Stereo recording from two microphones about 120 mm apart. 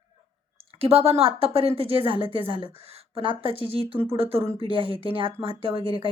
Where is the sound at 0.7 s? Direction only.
55° right (ahead or behind).